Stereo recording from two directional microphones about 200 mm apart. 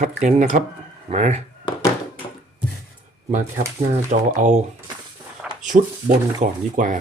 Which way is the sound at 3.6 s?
40° right (ahead or behind).